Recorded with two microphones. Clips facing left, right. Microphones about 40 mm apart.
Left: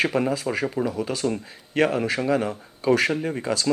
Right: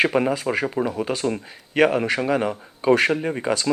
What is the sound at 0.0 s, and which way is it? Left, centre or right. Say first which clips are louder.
Speech: right 3 dB; right.